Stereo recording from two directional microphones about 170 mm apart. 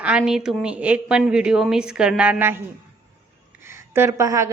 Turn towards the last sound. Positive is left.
turn(degrees=-15)  # may be behind; listen again after turning